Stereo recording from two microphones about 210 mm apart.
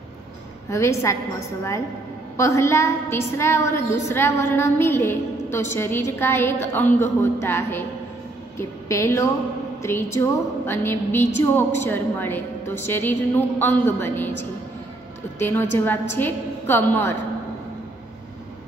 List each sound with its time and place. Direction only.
0.7 s a woman's voice: 15° left (ahead or behind)
2.3 s a woman's voice: 15° left (ahead or behind)
15.3 s a woman's voice: 10° left (ahead or behind)